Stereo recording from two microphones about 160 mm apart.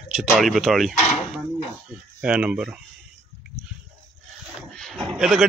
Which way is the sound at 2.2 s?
5° right (ahead or behind).